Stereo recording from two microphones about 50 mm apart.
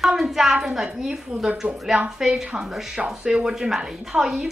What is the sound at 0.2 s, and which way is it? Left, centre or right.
A woman's voice, centre.